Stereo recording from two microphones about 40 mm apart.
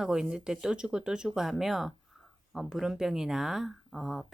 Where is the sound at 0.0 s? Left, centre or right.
Centre.